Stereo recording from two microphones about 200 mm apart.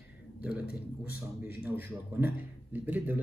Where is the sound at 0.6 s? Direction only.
50° left (ahead or behind).